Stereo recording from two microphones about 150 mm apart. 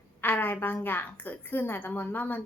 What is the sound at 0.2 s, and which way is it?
Speech, 10° left (ahead or behind).